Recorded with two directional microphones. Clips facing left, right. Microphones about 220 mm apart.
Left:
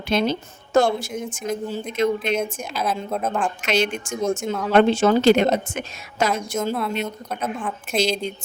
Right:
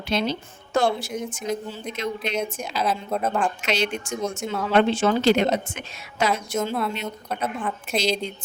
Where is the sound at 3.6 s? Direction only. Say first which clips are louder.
Left 3 dB; 50° left (ahead or behind).